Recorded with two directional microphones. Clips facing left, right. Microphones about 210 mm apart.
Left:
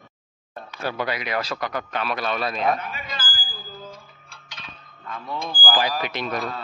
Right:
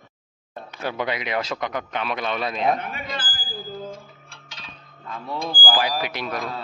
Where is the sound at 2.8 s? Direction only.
55° right (ahead or behind).